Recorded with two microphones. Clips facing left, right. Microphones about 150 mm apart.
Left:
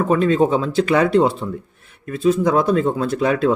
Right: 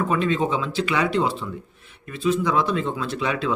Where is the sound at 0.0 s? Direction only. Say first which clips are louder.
Left 6 dB; 40° left (ahead or behind).